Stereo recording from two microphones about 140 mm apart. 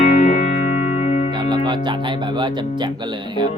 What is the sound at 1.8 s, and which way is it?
Speech, 35° right (ahead or behind).